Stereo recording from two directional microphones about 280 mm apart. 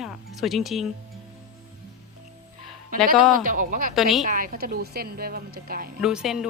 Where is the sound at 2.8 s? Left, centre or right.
Right.